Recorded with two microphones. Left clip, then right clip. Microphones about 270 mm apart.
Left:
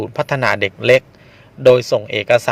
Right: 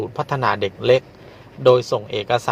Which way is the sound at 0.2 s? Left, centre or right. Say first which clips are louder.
Left 4 dB; left.